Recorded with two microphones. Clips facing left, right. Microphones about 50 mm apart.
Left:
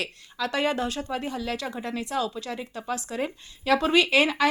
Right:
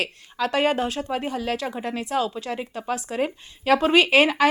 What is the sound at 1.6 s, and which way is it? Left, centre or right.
A woman's voice, right.